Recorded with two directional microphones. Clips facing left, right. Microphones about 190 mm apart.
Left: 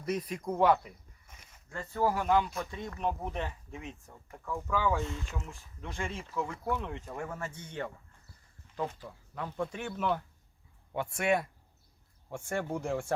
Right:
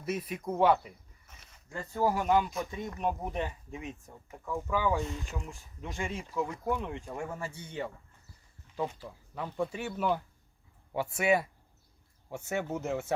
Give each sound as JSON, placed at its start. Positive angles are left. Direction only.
{"t": 0.0, "sound": "speech", "side_deg": -5}
{"t": 2.2, "sound": "speech", "side_deg": 0}
{"t": 2.6, "sound": "speech", "side_deg": -15}